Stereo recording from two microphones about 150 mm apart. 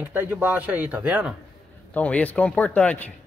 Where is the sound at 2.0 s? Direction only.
10° left (ahead or behind).